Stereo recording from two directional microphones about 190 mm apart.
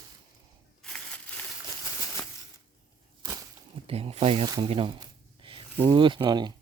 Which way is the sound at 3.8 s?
30° right (ahead or behind).